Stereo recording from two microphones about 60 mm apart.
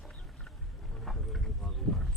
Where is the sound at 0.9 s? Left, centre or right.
Centre.